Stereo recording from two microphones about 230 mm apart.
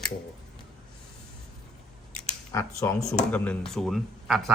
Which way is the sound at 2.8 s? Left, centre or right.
Centre.